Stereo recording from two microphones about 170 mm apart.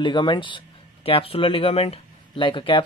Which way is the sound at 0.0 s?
25° left (ahead or behind).